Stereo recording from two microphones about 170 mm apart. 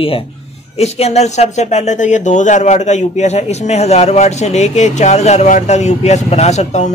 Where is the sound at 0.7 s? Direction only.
40° left (ahead or behind).